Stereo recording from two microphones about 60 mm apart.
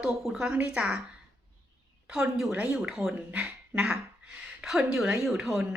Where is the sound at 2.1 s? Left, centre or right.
Centre.